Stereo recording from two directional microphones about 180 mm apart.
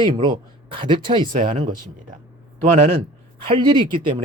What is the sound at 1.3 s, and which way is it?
Speech, 45° right (ahead or behind).